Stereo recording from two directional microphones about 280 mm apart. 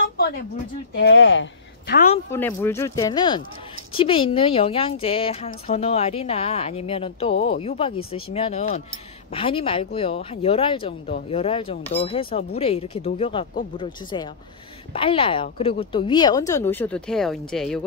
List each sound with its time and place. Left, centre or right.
0.9 s speech: left
2.3 s speech: centre